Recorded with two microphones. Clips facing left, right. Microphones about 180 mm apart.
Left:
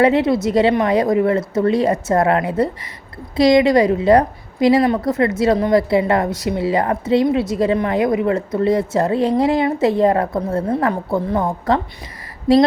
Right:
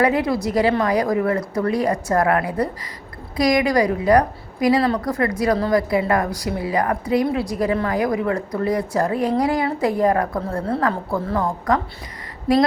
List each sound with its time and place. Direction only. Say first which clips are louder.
0.0 s a woman's voice: left 4 dB; 25° left (ahead or behind)